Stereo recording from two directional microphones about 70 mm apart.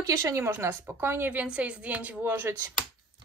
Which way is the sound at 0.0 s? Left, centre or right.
Right.